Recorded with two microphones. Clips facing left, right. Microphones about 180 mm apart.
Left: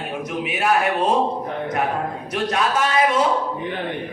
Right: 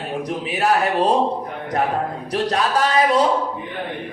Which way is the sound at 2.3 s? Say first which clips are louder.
Right 2 dB; 35° right (ahead or behind).